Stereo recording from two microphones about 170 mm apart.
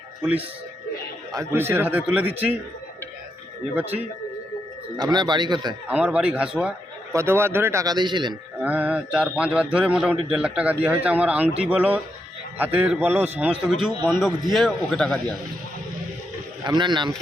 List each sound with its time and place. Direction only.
0.2 s a man's voice: 10° right (ahead or behind)
4.9 s a man's voice: 25° right (ahead or behind)
5.9 s a man's voice: 5° right (ahead or behind); by 8.4 s 25° right (ahead or behind)
8.6 s a man's voice: 10° right (ahead or behind)
16.6 s a man's voice: 25° right (ahead or behind)